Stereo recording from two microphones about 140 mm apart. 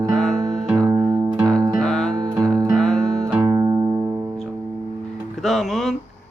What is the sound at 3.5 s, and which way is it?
Music, 25° right (ahead or behind).